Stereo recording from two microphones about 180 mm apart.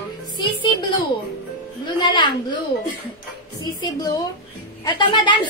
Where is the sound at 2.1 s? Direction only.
25° left (ahead or behind).